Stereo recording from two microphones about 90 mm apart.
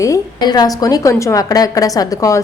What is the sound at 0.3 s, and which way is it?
A woman's voice, 50° left (ahead or behind).